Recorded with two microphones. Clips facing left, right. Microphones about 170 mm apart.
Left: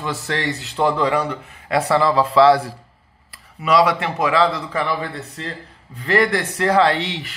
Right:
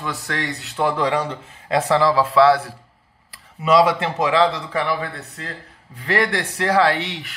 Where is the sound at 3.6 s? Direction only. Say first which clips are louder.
Right 1 dB; 25° right (ahead or behind).